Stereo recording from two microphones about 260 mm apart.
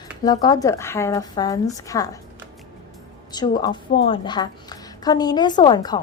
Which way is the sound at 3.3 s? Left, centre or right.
Centre.